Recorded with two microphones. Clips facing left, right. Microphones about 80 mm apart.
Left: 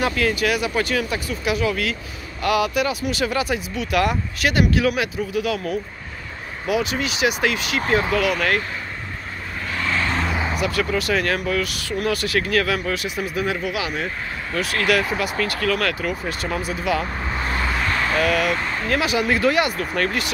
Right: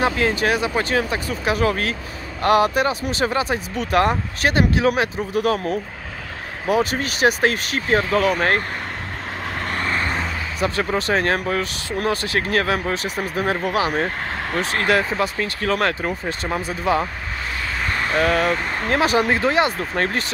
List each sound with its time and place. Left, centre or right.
0.0 s speech: right
9.8 s vehicle: right
10.6 s speech: right
14.6 s speech: right
18.1 s speech: right